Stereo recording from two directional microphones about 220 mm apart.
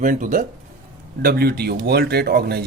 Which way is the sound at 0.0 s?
35° right (ahead or behind).